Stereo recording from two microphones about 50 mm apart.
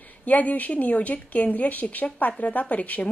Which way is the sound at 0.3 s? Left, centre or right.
Left.